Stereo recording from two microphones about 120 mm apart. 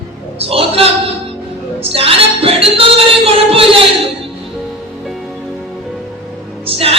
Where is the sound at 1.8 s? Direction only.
55° right (ahead or behind).